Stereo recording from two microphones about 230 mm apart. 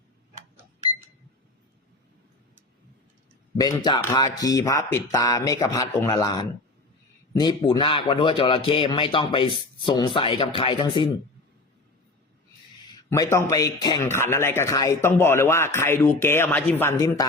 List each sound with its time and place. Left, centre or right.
3.6 s a man's voice: centre
13.1 s speech: centre